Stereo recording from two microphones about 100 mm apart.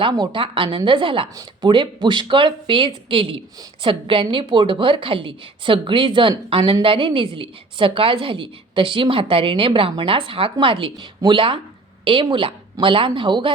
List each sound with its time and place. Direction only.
0.3 s speech: 60° right (ahead or behind)